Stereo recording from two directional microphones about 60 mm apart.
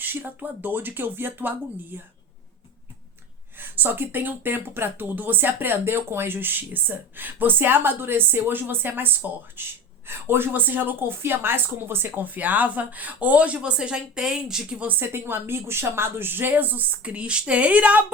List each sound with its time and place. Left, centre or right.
0.0 s speech: right
3.6 s a woman's voice: right; by 14.8 s centre
14.8 s speech: right